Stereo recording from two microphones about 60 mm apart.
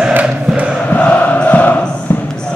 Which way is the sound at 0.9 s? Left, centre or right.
Left.